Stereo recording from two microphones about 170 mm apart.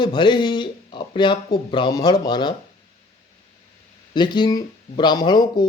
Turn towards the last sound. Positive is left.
turn(degrees=25)  # may be behind; listen again after turning